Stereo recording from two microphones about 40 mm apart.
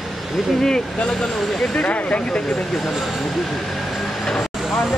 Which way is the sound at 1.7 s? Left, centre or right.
Left.